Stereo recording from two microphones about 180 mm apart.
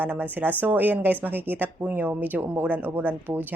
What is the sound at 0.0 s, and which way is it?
A woman's voice, 10° right (ahead or behind).